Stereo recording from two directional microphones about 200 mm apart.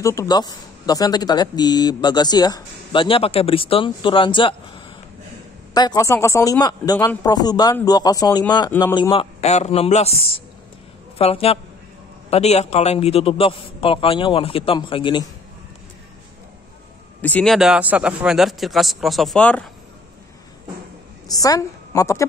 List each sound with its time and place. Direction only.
0.0 s speech: 15° left (ahead or behind)
5.8 s a woman's voice: 20° left (ahead or behind)
17.2 s speech: 5° left (ahead or behind)
21.3 s a woman's voice: 15° left (ahead or behind)